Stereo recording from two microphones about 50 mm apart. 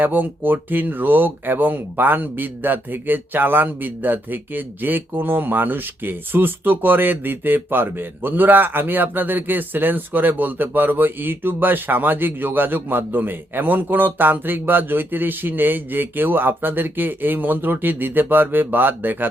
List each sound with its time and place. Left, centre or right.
0.0 s speech: right